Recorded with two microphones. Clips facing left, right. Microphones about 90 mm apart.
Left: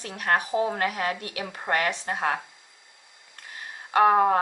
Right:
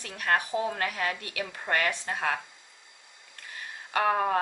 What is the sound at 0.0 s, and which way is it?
Speech, 25° left (ahead or behind).